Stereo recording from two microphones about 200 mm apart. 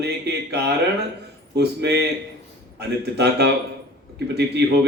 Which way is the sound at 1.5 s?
55° right (ahead or behind).